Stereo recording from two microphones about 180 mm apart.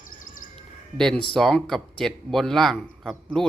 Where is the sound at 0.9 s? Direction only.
5° left (ahead or behind).